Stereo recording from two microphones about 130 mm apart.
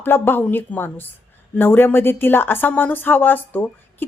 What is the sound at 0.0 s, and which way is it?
Speech, 15° left (ahead or behind).